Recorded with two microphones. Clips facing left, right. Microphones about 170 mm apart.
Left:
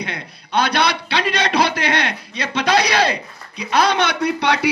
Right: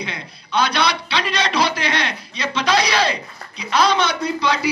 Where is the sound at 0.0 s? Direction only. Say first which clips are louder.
Left 2 dB; 55° left (ahead or behind).